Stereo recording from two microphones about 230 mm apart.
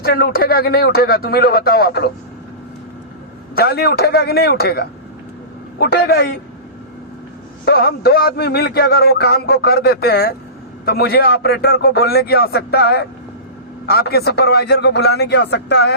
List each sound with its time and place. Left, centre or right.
0.0 s speech: left
3.5 s speech: left
7.6 s speech: left